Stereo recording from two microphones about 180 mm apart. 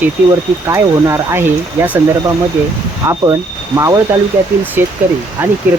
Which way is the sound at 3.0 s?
10° right (ahead or behind).